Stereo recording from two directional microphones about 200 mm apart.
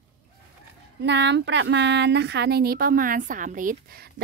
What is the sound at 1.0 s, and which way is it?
Speech, 60° right (ahead or behind).